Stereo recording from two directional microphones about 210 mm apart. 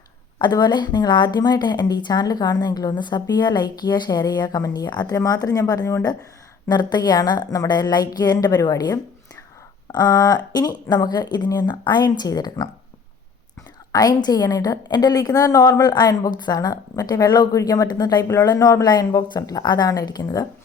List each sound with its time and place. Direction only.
0.3 s a woman's voice: 20° left (ahead or behind)
13.9 s a woman's voice: 20° left (ahead or behind)